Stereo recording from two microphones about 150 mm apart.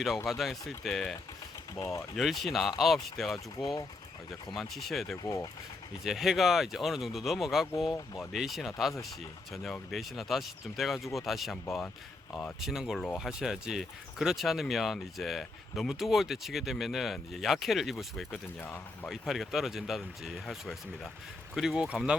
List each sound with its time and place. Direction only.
0.3 s speech: centre (ahead or behind)
1.7 s speech: 20° left (ahead or behind)
2.1 s speech: centre (ahead or behind)
5.2 s speech: 20° left (ahead or behind)
6.1 s speech: centre (ahead or behind)
7.9 s speech: 20° left (ahead or behind)
8.3 s speech: centre (ahead or behind)
12.3 s speech: 10° left (ahead or behind)
12.5 s speech: 5° right (ahead or behind)
18.3 s speech: 10° left (ahead or behind)
19.1 s speech: centre (ahead or behind)